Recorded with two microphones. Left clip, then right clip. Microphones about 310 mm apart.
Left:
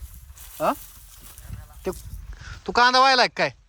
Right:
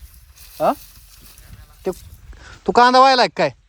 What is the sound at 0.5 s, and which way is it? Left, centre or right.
Speech, centre.